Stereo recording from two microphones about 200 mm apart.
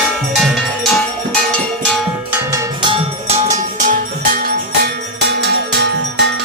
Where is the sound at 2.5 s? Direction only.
20° right (ahead or behind).